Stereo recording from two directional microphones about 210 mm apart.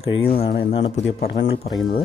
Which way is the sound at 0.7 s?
30° left (ahead or behind).